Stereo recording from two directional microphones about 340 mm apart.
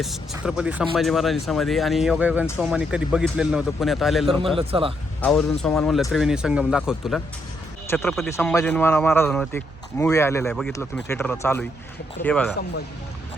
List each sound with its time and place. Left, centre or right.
0.0 s speech: centre
4.5 s speech: centre
5.2 s speech: centre